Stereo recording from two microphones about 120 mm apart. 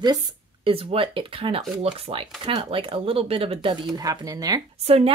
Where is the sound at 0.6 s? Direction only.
50° right (ahead or behind).